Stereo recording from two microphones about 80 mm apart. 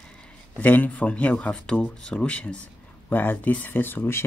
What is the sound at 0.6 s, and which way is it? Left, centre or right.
Speech, centre.